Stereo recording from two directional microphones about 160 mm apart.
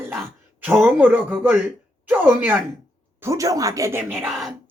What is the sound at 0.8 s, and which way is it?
Speech, 10° right (ahead or behind).